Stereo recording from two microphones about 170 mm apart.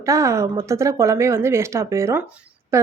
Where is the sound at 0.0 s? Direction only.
20° right (ahead or behind).